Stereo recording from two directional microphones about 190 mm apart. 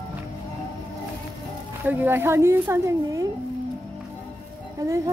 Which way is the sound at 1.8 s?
10° right (ahead or behind).